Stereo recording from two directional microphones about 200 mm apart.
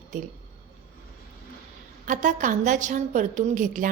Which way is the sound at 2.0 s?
40° right (ahead or behind).